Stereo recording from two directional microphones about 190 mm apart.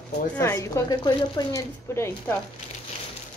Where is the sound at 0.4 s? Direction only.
15° left (ahead or behind).